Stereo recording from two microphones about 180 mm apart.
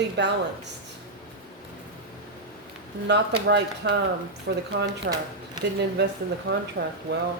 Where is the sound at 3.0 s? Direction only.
70° right (ahead or behind).